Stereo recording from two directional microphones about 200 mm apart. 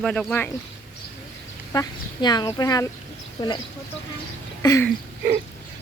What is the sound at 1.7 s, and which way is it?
Speech, 20° left (ahead or behind).